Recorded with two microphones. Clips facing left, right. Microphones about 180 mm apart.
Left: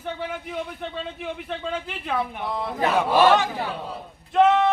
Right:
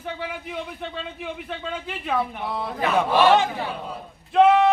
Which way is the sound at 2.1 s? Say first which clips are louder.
Right 1 dB; centre (ahead or behind).